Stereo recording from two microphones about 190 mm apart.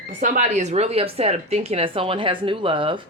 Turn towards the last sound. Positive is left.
turn(degrees=-25)  # may be behind; listen again after turning